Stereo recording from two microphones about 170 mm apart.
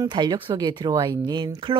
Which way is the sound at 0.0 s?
25° right (ahead or behind).